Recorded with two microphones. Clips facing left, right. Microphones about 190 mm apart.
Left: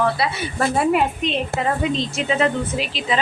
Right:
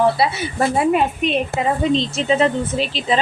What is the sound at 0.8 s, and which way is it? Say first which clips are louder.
A woman's voice: right 1 dB; 20° right (ahead or behind).